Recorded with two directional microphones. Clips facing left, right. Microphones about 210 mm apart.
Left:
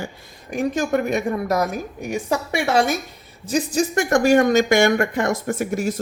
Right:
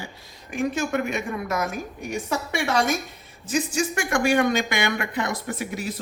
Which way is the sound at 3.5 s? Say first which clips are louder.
Left 4 dB; 35° left (ahead or behind).